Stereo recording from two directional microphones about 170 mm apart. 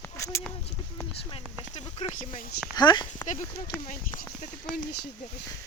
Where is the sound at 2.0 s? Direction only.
50° left (ahead or behind).